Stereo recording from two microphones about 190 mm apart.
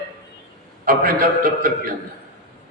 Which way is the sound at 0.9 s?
50° right (ahead or behind).